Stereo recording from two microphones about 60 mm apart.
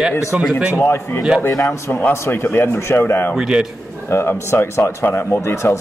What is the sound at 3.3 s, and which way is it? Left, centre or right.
Speech, centre.